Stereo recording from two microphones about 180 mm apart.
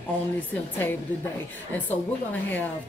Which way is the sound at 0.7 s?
10° left (ahead or behind).